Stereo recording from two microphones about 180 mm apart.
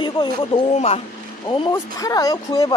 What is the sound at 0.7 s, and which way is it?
Speech, 35° left (ahead or behind).